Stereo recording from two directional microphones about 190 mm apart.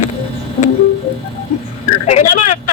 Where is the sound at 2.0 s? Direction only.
35° left (ahead or behind).